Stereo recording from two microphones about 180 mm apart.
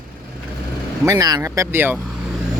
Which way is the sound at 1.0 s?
20° right (ahead or behind).